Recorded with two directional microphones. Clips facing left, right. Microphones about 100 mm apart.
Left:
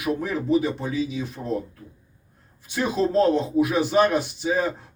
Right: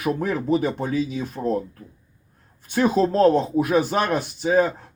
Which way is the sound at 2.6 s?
50° right (ahead or behind).